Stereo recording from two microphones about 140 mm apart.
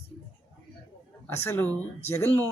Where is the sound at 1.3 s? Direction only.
15° left (ahead or behind).